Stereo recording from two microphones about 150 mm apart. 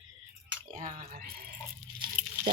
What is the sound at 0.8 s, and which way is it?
Speech, 55° right (ahead or behind).